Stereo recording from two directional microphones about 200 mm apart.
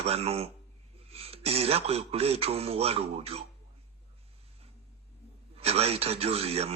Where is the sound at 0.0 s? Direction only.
30° right (ahead or behind).